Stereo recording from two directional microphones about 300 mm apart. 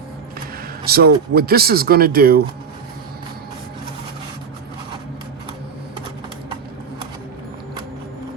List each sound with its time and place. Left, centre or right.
0.9 s speech: right